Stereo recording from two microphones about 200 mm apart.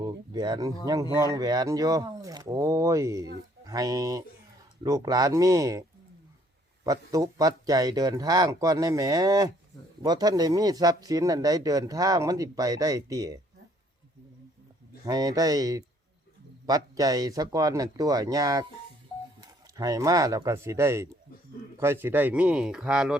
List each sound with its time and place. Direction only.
0.0 s speech: 20° right (ahead or behind)
6.8 s speech: 15° right (ahead or behind)
15.0 s speech: 20° right (ahead or behind)